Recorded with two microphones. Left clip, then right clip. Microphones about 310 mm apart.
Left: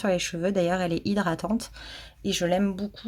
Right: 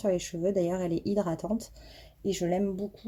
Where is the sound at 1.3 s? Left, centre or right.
Left.